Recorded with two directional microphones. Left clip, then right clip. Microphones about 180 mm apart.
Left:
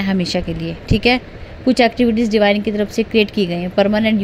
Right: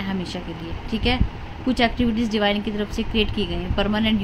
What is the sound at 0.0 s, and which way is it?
A woman's voice, 45° left (ahead or behind).